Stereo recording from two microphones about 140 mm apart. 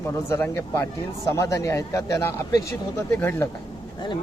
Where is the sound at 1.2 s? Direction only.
20° left (ahead or behind).